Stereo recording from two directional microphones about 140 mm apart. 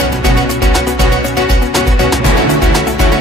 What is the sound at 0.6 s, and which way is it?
Music, centre (ahead or behind).